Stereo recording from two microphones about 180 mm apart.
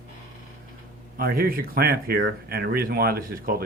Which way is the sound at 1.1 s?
55° right (ahead or behind).